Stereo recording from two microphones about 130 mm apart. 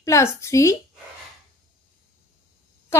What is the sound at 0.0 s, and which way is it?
Speech, 20° left (ahead or behind).